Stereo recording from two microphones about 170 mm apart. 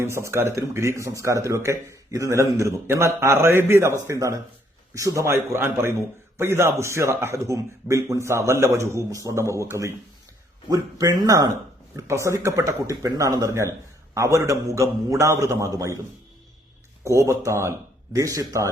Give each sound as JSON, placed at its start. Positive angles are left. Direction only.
{"t": 0.0, "sound": "a man's voice", "side_deg": -15}
{"t": 10.7, "sound": "a man's voice", "side_deg": -20}
{"t": 17.0, "sound": "a man's voice", "side_deg": -15}